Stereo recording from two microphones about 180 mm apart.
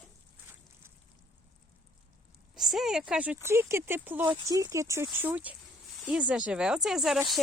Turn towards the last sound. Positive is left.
turn(degrees=0)  # may be behind; listen again after turning